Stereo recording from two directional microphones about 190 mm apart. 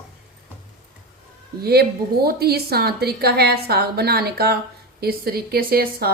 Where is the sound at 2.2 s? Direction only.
55° right (ahead or behind).